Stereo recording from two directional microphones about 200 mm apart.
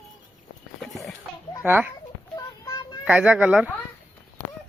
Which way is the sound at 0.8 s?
Centre (ahead or behind).